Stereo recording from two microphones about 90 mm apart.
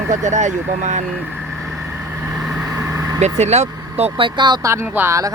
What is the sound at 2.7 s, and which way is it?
Vehicle, 40° right (ahead or behind).